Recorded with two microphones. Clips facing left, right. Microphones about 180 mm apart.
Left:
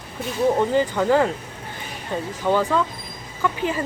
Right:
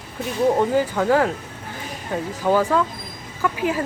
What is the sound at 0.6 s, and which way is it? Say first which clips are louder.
Speech: even; 5° right (ahead or behind).